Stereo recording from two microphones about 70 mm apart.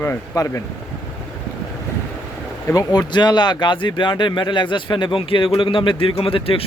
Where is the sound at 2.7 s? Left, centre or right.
Left.